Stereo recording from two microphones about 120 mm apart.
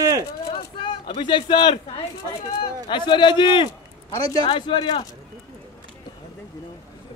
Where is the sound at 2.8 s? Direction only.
40° left (ahead or behind).